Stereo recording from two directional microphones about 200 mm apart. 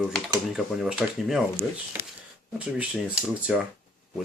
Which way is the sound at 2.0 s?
15° right (ahead or behind).